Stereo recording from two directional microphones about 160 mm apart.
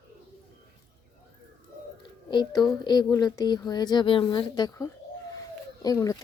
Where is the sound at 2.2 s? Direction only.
30° left (ahead or behind).